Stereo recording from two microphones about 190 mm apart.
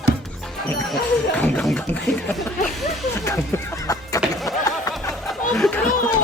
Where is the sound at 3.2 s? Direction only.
15° left (ahead or behind).